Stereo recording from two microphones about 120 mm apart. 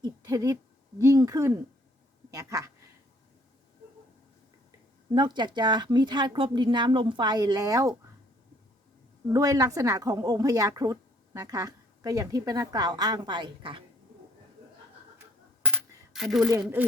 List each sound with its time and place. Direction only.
0.0 s a sound: 25° right (ahead or behind)
0.9 s speech: 30° right (ahead or behind)
5.1 s speech: 40° right (ahead or behind)
9.3 s speech: 30° right (ahead or behind)
15.6 s coin: 5° right (ahead or behind)